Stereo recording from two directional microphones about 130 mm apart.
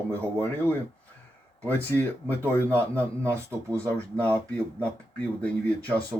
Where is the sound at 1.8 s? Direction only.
15° left (ahead or behind).